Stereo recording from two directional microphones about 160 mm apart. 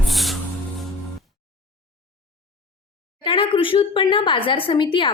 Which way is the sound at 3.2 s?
30° left (ahead or behind).